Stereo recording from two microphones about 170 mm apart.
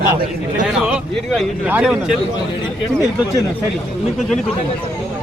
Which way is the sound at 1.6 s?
5° right (ahead or behind).